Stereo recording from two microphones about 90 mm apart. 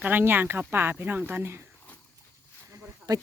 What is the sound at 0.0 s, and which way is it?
Speech, 20° right (ahead or behind).